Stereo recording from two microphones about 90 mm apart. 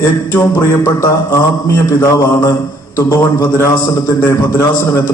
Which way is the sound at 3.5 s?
35° left (ahead or behind).